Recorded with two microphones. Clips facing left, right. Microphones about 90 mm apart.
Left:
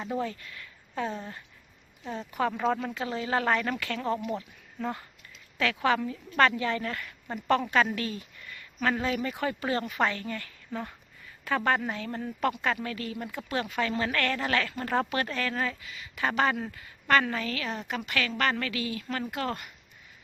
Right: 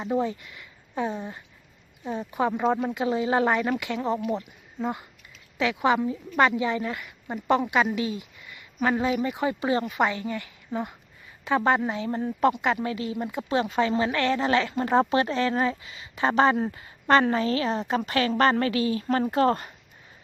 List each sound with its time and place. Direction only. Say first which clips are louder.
0.0 s a woman's voice: right 6 dB; 20° right (ahead or behind); by 19.7 s 35° right (ahead or behind)